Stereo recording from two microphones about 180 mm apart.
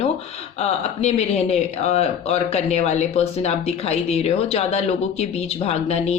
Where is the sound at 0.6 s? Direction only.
35° left (ahead or behind).